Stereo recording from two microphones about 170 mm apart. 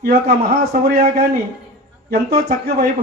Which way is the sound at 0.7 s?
65° right (ahead or behind).